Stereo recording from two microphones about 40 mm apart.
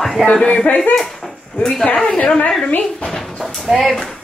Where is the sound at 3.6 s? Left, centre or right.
Centre.